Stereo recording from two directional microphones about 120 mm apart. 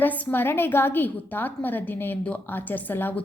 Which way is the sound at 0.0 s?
15° left (ahead or behind).